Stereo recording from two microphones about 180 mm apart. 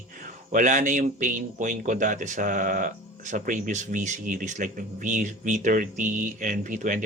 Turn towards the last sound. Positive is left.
turn(degrees=-45)  # may be behind; listen again after turning